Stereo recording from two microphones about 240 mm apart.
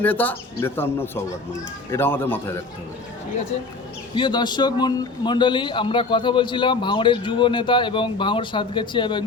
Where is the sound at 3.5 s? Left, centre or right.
Left.